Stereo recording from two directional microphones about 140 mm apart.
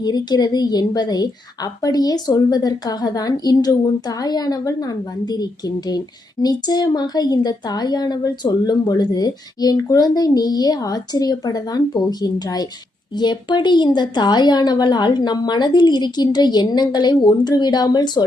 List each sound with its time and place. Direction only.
0.0 s a woman's voice: 30° left (ahead or behind)